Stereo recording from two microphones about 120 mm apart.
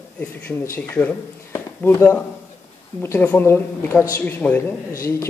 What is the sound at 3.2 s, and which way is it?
A man's voice, 15° left (ahead or behind).